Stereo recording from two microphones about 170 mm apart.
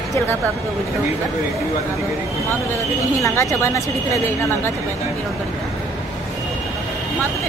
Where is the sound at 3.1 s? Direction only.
20° left (ahead or behind).